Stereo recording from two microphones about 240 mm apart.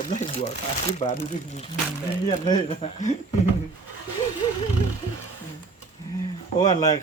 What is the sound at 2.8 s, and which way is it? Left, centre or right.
Speech, left.